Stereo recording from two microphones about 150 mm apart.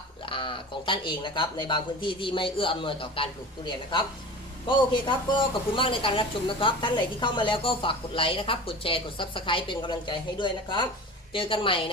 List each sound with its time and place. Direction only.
0.3 s speech: 35° left (ahead or behind)
4.9 s speech: 30° left (ahead or behind)